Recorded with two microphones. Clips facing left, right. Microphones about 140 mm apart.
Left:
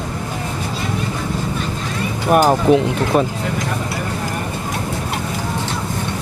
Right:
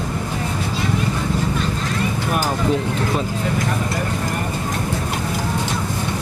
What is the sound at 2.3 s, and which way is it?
Speech, 65° left (ahead or behind).